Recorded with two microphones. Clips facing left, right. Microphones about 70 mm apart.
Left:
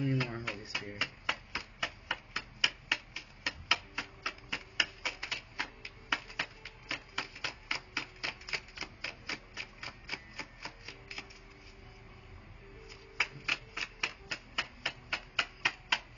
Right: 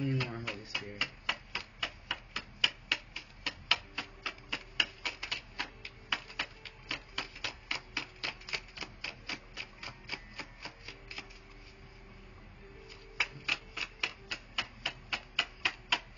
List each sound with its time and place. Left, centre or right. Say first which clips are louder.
0.2 s a sound: left 1 dB; centre
1.0 s typewriter: left 1 dB; centre
8.3 s typewriter: left 1 dB; centre
8.7 s typewriter: left 1 dB; centre
12.8 s typewriter: left 1 dB; centre